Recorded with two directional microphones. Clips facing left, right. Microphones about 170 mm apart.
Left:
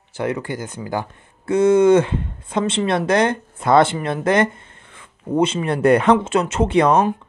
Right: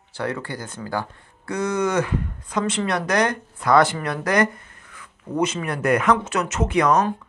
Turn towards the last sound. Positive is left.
turn(degrees=30)  # may be behind; listen again after turning